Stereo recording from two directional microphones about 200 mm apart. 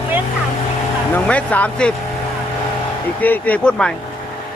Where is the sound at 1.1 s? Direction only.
5° left (ahead or behind).